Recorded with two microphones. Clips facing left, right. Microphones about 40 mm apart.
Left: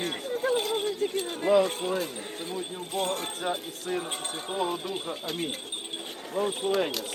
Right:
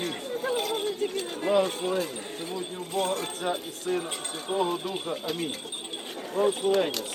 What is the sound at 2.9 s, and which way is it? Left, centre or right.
Speech, left.